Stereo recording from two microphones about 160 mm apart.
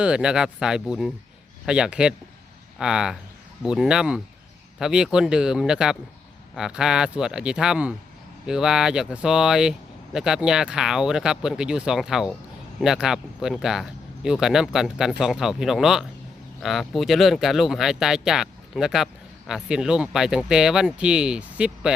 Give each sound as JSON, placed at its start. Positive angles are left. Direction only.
{"t": 0.0, "sound": "speech", "side_deg": -5}